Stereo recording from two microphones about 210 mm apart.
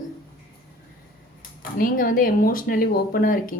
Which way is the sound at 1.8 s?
40° left (ahead or behind).